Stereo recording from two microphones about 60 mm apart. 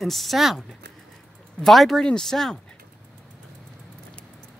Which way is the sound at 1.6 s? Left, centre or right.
Centre.